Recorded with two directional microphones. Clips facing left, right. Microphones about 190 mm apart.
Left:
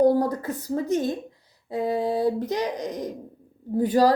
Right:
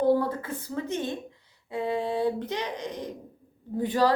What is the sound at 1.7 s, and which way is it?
Speech, 40° left (ahead or behind).